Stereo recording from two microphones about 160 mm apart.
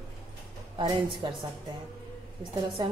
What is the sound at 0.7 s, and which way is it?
Speech, 30° right (ahead or behind).